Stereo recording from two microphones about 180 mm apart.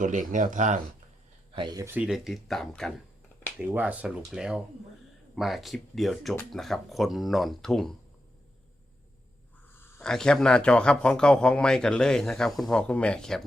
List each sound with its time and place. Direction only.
0.0 s speech: 45° right (ahead or behind)
1.5 s speech: 20° right (ahead or behind); by 2.9 s centre (ahead or behind)
3.6 s speech: 10° right (ahead or behind)
9.7 s speech: 10° left (ahead or behind)